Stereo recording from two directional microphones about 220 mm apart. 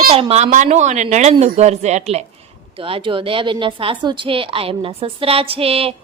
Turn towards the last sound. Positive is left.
turn(degrees=-25)  # may be behind; listen again after turning